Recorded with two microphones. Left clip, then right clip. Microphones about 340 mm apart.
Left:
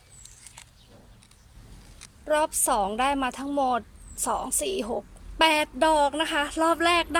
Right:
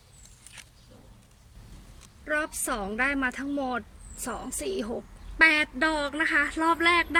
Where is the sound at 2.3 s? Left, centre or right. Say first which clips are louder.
Left 5 dB; centre.